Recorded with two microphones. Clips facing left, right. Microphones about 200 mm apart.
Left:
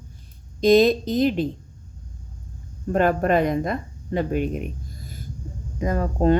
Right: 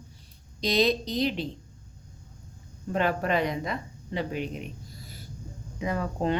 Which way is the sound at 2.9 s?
50° left (ahead or behind).